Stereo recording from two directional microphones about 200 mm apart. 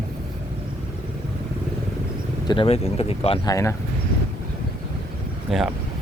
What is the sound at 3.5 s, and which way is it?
Speech, 15° left (ahead or behind).